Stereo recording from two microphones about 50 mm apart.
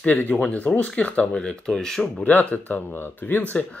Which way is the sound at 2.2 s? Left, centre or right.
Left.